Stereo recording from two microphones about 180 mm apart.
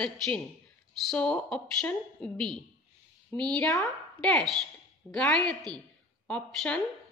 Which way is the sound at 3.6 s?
15° left (ahead or behind).